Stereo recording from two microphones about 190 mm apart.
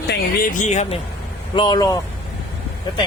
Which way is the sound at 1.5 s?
25° left (ahead or behind).